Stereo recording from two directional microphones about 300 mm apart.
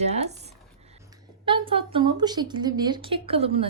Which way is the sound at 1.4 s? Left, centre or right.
Centre.